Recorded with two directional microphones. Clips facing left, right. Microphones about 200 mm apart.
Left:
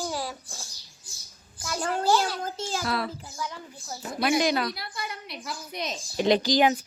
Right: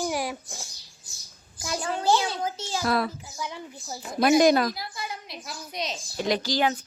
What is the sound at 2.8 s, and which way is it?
Speech, 50° right (ahead or behind).